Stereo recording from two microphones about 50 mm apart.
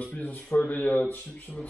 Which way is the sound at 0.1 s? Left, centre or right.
Left.